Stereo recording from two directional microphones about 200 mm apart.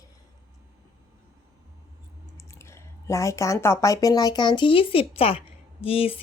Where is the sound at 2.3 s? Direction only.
15° left (ahead or behind).